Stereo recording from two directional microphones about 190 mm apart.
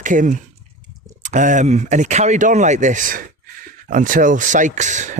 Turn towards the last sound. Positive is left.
turn(degrees=-40)  # may be behind; listen again after turning